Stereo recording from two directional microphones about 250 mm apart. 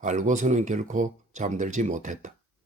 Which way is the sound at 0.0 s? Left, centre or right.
Right.